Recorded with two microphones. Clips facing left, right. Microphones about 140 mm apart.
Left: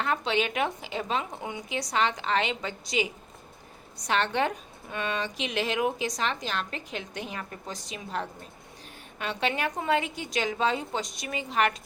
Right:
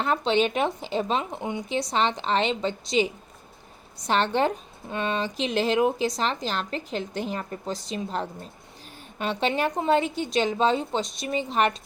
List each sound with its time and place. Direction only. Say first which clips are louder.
0.0 s a woman's voice: right 5 dB; 30° right (ahead or behind)